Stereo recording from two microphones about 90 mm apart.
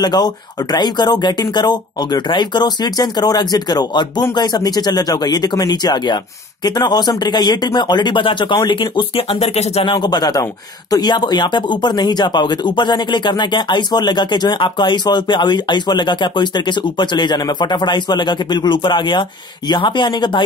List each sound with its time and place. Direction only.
0.0 s speech: 50° left (ahead or behind); by 9.9 s 90° left
9.9 s speech: 50° left (ahead or behind)